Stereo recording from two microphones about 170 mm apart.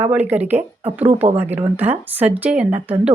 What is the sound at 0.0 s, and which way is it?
Speech, 10° right (ahead or behind).